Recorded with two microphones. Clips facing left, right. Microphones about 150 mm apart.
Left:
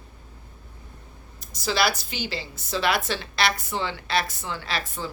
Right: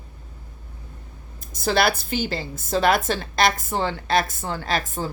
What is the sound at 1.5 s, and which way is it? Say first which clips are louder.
A woman's voice: right 4 dB; 50° right (ahead or behind).